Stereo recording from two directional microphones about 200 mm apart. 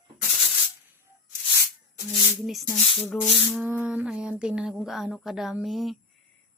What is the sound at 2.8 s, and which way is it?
Rub, 30° left (ahead or behind).